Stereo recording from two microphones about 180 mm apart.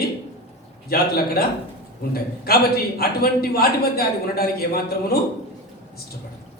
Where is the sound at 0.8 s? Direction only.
60° left (ahead or behind).